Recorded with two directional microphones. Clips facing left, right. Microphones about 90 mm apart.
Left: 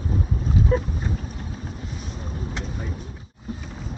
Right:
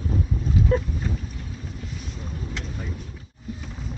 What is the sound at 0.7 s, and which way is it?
Speech, 10° left (ahead or behind).